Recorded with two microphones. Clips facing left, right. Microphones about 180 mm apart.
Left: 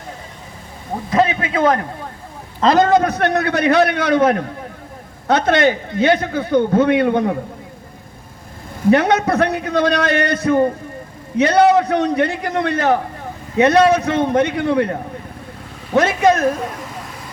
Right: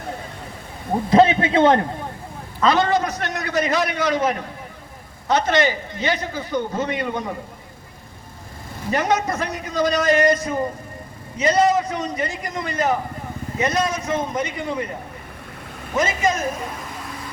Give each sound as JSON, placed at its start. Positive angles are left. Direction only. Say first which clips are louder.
{"t": 1.1, "sound": "a man's voice", "louder": "right 2 dB", "side_deg": -30}
{"t": 2.6, "sound": "a man's voice", "louder": "left 5 dB", "side_deg": 40}
{"t": 8.9, "sound": "a man's voice", "louder": "left 7 dB", "side_deg": 65}
{"t": 16.0, "sound": "a man's voice", "louder": "left 7 dB", "side_deg": 65}